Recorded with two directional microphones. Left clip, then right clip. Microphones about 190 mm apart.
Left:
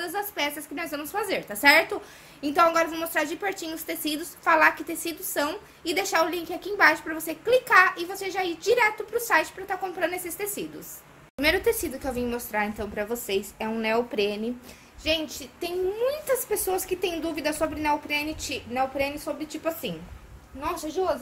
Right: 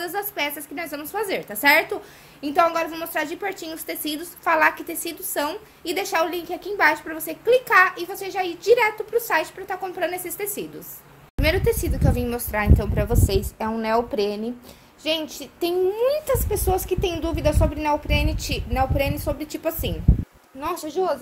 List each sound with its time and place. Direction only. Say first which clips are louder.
0.0 s a woman's voice: right 2 dB; 15° right (ahead or behind)
11.4 s a woman's voice: right 2 dB; centre (ahead or behind)
12.0 s a woman's voice: right 4 dB; 30° right (ahead or behind)
13.7 s a woman's voice: right 4 dB; 15° right (ahead or behind); by 19.9 s 40° right (ahead or behind)
20.6 s a woman's voice: right 3 dB; 50° right (ahead or behind)